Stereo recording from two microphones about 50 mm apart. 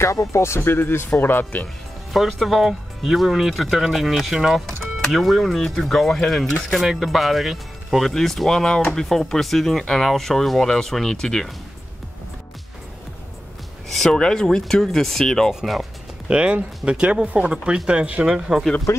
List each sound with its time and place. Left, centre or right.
0.0 s speech: left
0.6 s speech: left
1.2 s speech: left
2.1 s speech: centre
13.9 s speech: centre
15.6 s speech: centre
16.3 s speech: right
18.9 s speech: left